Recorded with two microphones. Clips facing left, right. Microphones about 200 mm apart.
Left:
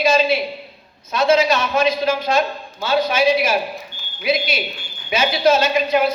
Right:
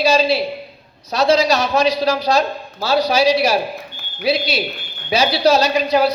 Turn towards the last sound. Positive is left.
turn(degrees=-35)  # may be behind; listen again after turning